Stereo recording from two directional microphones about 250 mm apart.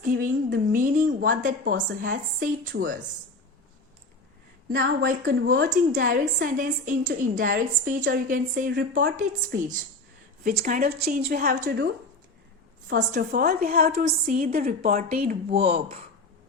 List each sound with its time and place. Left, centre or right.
0.0 s a woman's voice: right
4.7 s a woman's voice: right
12.9 s a woman's voice: right